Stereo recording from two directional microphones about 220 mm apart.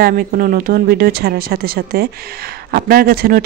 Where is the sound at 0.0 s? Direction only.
40° right (ahead or behind).